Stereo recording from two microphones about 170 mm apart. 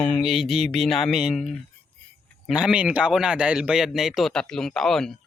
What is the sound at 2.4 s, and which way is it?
A man's voice, 5° right (ahead or behind).